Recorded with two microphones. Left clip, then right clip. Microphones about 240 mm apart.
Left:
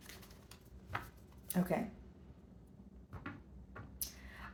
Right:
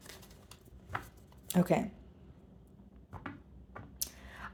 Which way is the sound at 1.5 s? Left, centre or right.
Right.